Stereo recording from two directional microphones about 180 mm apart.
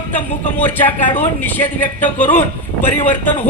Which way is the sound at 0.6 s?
10° left (ahead or behind).